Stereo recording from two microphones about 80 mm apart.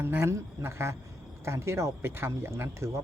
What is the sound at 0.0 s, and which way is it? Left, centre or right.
Speech, right.